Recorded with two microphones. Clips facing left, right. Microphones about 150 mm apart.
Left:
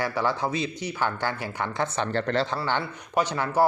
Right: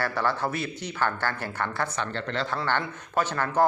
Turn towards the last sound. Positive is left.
turn(degrees=15)  # may be behind; listen again after turning